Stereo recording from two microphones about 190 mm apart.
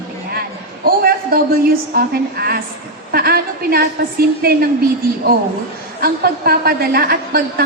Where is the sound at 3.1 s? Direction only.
55° right (ahead or behind).